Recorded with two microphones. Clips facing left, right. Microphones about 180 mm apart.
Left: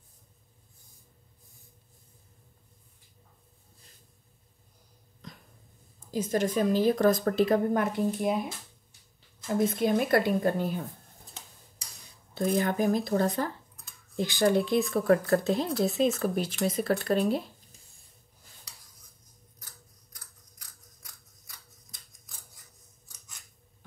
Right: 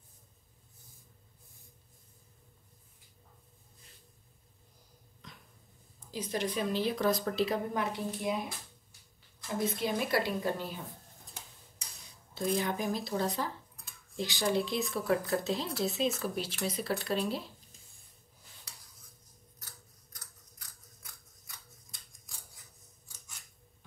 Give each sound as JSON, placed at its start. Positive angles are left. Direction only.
{"t": 5.2, "sound": "a sound", "side_deg": 35}
{"t": 6.1, "sound": "a woman's voice", "side_deg": 45}
{"t": 9.8, "sound": "a woman's voice", "side_deg": 50}
{"t": 12.4, "sound": "a woman's voice", "side_deg": 50}